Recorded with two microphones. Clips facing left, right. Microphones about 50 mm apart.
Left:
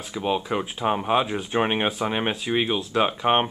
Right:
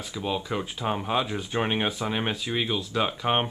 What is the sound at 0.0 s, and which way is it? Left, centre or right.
Speech, left.